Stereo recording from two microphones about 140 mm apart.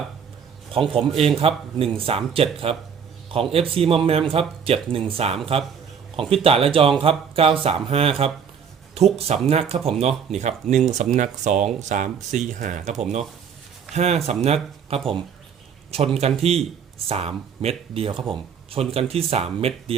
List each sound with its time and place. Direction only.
0.7 s speech: 40° right (ahead or behind)